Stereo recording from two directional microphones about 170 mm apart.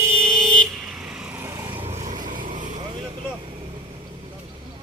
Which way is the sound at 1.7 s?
40° right (ahead or behind).